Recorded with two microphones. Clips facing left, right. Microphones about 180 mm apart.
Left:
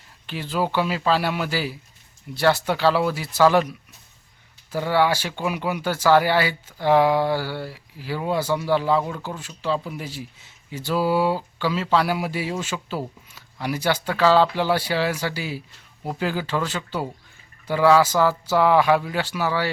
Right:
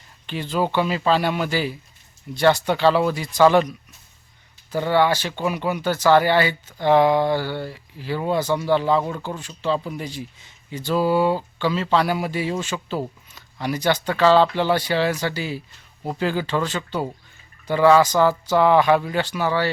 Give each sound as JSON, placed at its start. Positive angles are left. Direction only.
{"t": 0.3, "sound": "speech", "side_deg": 5}